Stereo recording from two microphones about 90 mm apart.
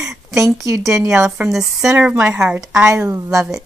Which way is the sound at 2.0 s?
15° right (ahead or behind).